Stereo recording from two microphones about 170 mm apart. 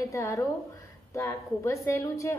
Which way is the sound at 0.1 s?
20° left (ahead or behind).